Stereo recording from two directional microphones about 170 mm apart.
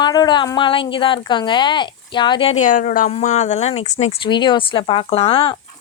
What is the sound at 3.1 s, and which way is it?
Speech, 40° left (ahead or behind).